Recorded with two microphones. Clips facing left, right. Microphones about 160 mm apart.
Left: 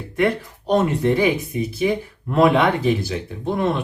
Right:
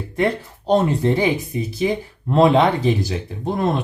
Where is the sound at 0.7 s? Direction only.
30° right (ahead or behind).